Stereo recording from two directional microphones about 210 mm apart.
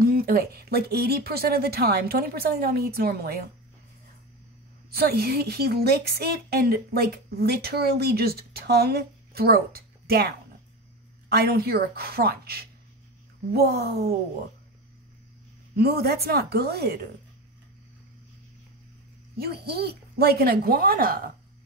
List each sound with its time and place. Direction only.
0.0 s a woman's voice: 45° right (ahead or behind)
4.9 s a woman's voice: 50° right (ahead or behind)
15.7 s a woman's voice: 50° right (ahead or behind)
19.3 s a woman's voice: 45° right (ahead or behind)